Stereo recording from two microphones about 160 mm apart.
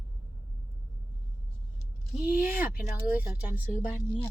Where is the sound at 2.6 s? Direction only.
10° right (ahead or behind).